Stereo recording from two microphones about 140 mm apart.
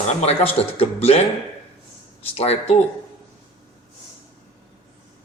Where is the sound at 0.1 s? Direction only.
50° left (ahead or behind).